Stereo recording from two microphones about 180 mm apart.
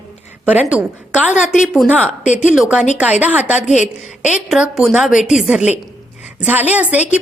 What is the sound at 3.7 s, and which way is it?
Speech, 40° left (ahead or behind).